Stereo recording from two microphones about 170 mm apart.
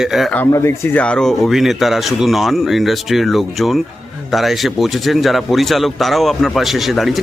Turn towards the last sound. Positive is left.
turn(degrees=0)  # may be behind; listen again after turning